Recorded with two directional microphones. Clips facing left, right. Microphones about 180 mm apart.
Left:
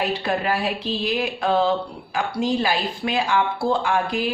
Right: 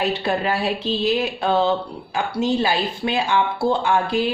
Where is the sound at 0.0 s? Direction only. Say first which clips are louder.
Right 2 dB; 25° right (ahead or behind).